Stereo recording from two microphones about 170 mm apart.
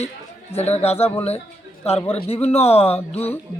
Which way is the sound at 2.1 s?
35° left (ahead or behind).